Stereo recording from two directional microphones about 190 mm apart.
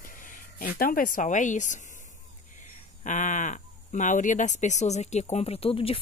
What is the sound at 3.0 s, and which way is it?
Speech, 40° left (ahead or behind).